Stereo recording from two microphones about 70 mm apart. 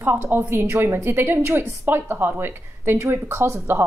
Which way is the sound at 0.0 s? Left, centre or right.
Right.